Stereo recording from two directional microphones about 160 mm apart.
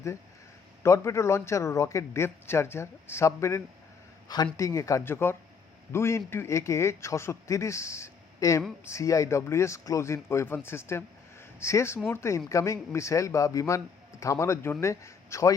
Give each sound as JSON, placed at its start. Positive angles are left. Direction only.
{"t": 0.8, "sound": "a man's voice", "side_deg": 20}